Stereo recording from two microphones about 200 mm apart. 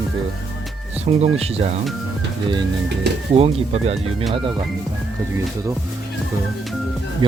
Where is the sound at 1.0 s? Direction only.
30° right (ahead or behind).